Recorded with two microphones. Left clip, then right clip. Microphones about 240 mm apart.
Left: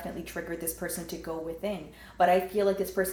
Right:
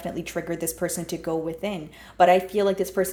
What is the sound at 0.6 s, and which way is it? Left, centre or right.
Speech, right.